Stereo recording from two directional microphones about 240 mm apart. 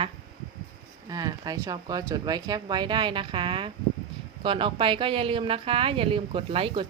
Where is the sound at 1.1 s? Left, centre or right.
Centre.